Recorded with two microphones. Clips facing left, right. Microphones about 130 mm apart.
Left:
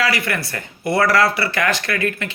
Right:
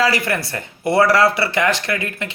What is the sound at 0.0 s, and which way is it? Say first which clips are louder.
A man's voice: right 3 dB; 35° right (ahead or behind).